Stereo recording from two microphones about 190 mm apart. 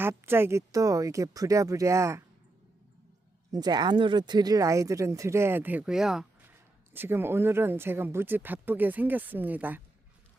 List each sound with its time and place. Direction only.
0.0 s speech: 10° right (ahead or behind)
3.5 s speech: 20° right (ahead or behind)